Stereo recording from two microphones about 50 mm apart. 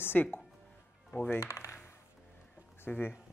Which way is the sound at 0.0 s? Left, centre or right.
Left.